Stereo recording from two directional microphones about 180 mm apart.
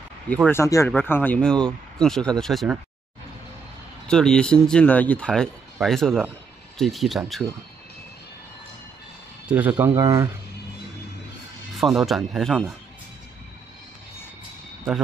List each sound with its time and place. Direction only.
0.5 s speech: 15° left (ahead or behind)
4.1 s speech: 5° left (ahead or behind)
9.5 s speech: 10° right (ahead or behind)
11.7 s speech: centre (ahead or behind)